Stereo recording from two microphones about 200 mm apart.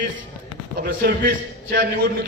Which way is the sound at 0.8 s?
45° right (ahead or behind).